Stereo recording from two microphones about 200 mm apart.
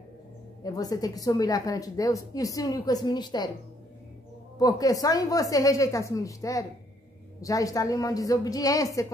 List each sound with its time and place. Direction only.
0.7 s a woman's voice: 20° left (ahead or behind)
4.6 s a woman's voice: 20° left (ahead or behind)